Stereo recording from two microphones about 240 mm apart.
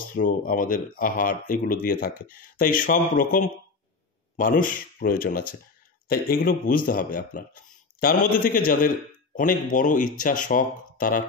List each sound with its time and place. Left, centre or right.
0.1 s speech: left